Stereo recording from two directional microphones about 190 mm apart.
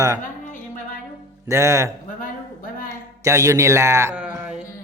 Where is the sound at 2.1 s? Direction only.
45° left (ahead or behind).